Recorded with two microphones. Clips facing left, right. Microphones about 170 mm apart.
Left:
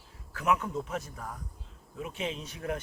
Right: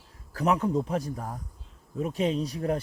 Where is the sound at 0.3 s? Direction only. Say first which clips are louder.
Right 5 dB; 35° right (ahead or behind).